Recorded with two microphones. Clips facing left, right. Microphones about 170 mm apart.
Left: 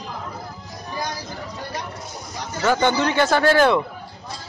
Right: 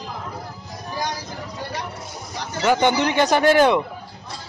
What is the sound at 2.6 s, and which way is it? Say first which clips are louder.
Speech: right 1 dB; 15° right (ahead or behind).